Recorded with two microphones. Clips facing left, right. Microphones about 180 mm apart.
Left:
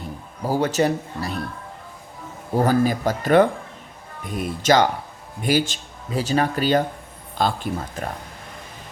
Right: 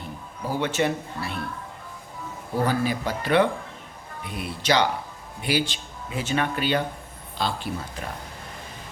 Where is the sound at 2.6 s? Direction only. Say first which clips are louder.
Left 6 dB; 45° left (ahead or behind).